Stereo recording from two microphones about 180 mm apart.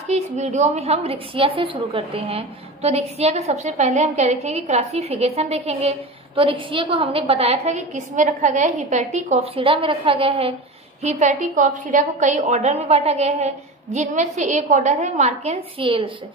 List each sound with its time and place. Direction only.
0.1 s a woman's voice: 40° right (ahead or behind)